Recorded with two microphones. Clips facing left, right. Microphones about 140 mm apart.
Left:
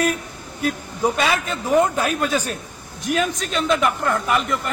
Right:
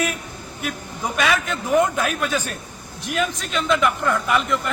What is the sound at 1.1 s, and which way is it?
A man's voice, 30° left (ahead or behind).